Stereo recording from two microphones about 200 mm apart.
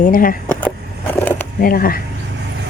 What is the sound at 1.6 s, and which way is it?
Speech, 45° left (ahead or behind).